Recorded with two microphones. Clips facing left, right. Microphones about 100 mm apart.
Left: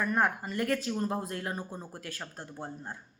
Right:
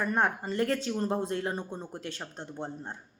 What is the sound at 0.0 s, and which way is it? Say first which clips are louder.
Speech: even; 30° right (ahead or behind).